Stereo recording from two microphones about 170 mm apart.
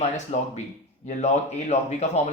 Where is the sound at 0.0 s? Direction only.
40° left (ahead or behind).